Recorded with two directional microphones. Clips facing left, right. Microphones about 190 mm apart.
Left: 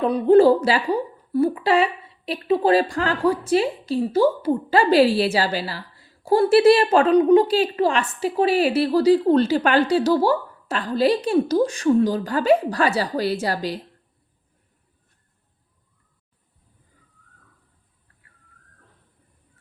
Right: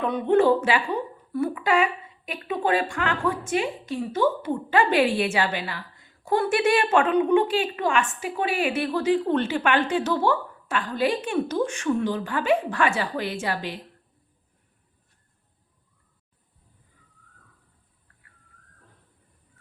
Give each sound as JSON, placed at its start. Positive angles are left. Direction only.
{"t": 0.0, "sound": "a woman's voice", "side_deg": 35}